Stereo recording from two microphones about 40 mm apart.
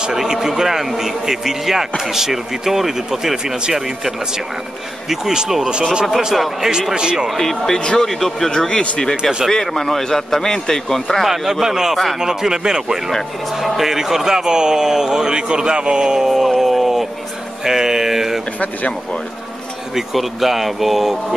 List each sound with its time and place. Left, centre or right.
0.0 s a man's voice: centre
5.1 s a man's voice: centre
6.3 s a man's voice: centre
7.0 s speech: right
7.2 s a man's voice: centre
7.8 s speech: centre
8.1 s a man's voice: centre
11.6 s a man's voice: centre
17.6 s mantra: centre
20.0 s speech: centre